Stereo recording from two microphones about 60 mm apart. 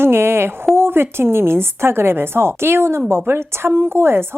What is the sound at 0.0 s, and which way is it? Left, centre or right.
Speech, right.